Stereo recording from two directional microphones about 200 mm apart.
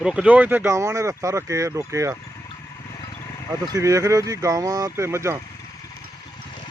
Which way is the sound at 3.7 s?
15° right (ahead or behind).